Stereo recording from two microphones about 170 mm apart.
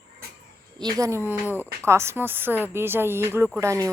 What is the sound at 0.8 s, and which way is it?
A woman's voice, 25° right (ahead or behind).